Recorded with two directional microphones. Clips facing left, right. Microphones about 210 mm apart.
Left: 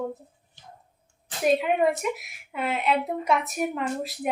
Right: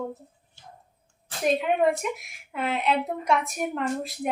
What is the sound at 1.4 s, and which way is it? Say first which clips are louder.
Speech: left 1 dB; 5° left (ahead or behind).